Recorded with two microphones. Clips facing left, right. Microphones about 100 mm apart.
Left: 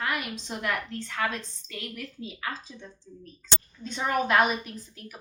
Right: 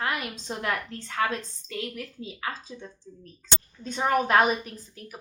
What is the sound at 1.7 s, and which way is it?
A woman's voice, 35° right (ahead or behind).